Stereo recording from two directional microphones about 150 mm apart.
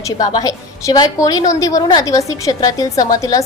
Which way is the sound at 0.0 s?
25° left (ahead or behind).